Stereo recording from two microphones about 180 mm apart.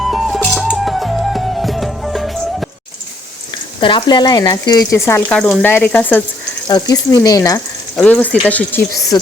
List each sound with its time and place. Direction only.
0.0 s music: centre (ahead or behind)
3.5 s speech: 25° left (ahead or behind); by 6.2 s 10° left (ahead or behind)
6.7 s speech: 20° left (ahead or behind)
7.9 s speech: 10° left (ahead or behind)
9.1 s speech: 20° left (ahead or behind)